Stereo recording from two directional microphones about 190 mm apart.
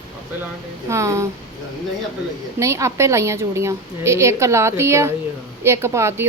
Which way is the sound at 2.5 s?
15° right (ahead or behind).